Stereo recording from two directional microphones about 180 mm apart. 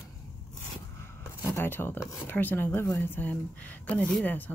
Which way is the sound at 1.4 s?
15° left (ahead or behind).